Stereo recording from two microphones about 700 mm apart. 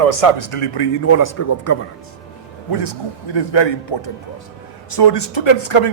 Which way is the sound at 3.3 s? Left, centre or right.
Left.